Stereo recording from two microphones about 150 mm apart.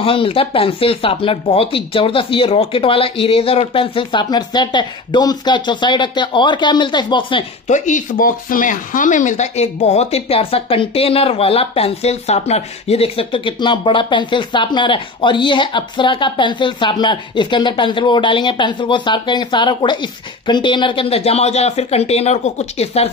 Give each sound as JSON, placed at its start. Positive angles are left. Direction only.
{"t": 0.0, "sound": "speech", "side_deg": 35}
{"t": 7.6, "sound": "speech", "side_deg": 55}